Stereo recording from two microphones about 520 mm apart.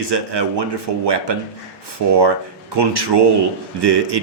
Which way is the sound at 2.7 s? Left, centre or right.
Right.